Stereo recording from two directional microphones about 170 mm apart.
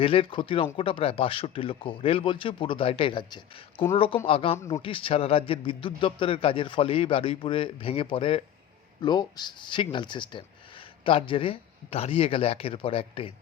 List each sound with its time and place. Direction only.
0.0 s speech: 30° left (ahead or behind)
4.5 s speech: 15° left (ahead or behind)
4.8 s speech: 30° left (ahead or behind)